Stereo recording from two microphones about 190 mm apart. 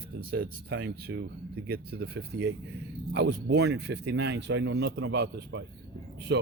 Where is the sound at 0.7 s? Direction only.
70° right (ahead or behind).